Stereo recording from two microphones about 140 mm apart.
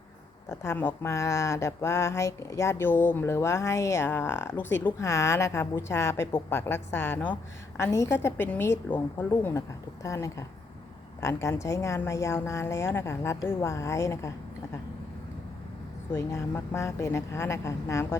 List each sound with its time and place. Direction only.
0.4 s speech: 20° left (ahead or behind)
16.1 s speech: 20° left (ahead or behind)